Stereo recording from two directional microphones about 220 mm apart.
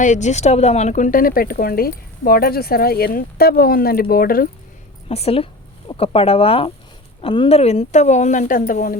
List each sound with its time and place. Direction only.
0.0 s speech: 35° left (ahead or behind)
5.0 s speech: 25° left (ahead or behind)